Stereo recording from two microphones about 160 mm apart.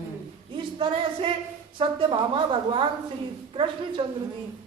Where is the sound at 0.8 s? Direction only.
30° right (ahead or behind).